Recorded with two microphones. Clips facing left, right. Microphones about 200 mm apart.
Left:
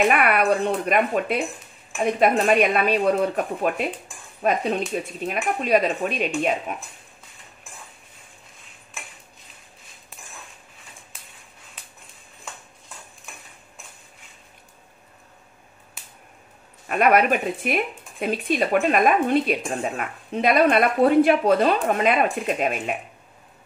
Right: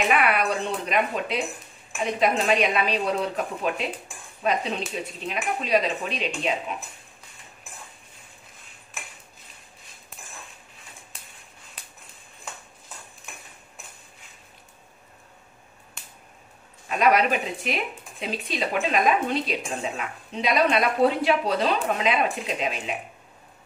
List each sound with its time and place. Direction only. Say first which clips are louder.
0.1 s speech: left 3 dB; 55° left (ahead or behind)
16.0 s finger snapping: even; 5° left (ahead or behind)
16.9 s speech: left 3 dB; 55° left (ahead or behind)